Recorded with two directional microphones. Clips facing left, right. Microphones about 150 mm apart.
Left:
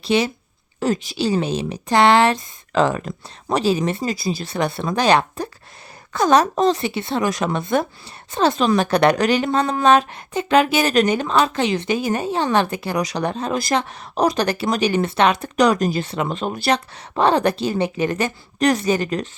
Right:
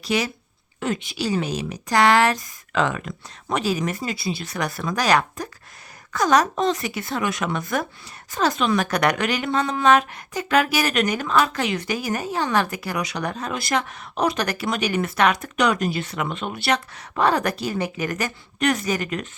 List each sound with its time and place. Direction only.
0.0 s a woman's voice: 25° left (ahead or behind)